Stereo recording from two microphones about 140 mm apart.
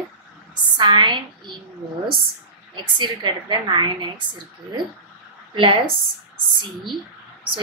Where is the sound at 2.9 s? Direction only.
35° right (ahead or behind).